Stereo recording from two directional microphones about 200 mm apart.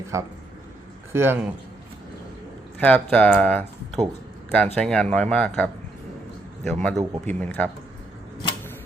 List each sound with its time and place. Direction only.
0.1 s a man's voice: 15° right (ahead or behind)
2.7 s speech: 5° left (ahead or behind)
6.9 s a man's voice: 15° right (ahead or behind)
7.3 s speech: 5° left (ahead or behind)